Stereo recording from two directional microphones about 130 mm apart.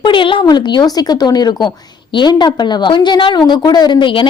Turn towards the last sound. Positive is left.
turn(degrees=40)  # may be behind; listen again after turning